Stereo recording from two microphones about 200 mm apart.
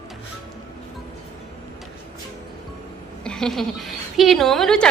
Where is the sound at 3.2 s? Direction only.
5° left (ahead or behind).